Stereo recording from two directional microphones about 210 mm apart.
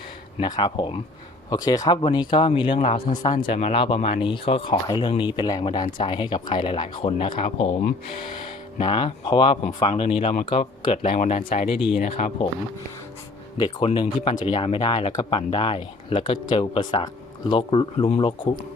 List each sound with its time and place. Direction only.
0.3 s speech: 20° left (ahead or behind)
8.8 s speech: 20° left (ahead or behind)
13.6 s speech: 20° left (ahead or behind)